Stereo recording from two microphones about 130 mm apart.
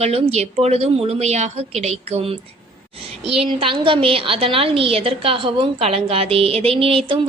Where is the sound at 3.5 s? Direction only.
40° right (ahead or behind).